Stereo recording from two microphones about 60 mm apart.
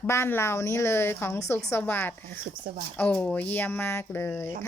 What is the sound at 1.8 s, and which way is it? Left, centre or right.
Speech, left.